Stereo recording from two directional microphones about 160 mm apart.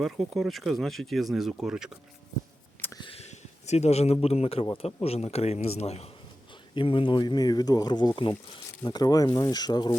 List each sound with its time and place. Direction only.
0.0 s speech: centre (ahead or behind)
3.0 s a sound: 40° left (ahead or behind)
5.0 s a man's voice: 40° left (ahead or behind)